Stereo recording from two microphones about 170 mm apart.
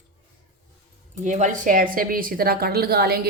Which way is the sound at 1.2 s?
45° right (ahead or behind).